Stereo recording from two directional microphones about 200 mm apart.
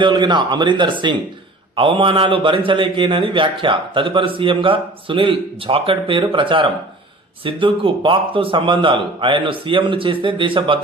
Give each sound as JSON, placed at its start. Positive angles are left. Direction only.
{"t": 0.0, "sound": "a man's voice", "side_deg": -20}